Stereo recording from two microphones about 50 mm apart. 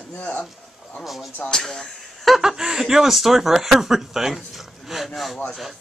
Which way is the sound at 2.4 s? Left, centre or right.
Centre.